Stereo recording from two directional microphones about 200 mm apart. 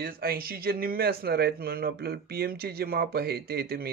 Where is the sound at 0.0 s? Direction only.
45° right (ahead or behind).